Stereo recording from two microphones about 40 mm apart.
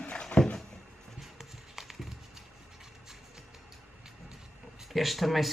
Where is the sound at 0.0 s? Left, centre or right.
Left.